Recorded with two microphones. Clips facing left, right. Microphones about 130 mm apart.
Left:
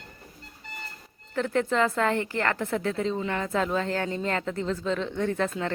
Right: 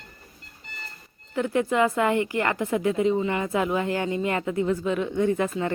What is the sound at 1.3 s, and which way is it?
A woman's voice, 10° right (ahead or behind).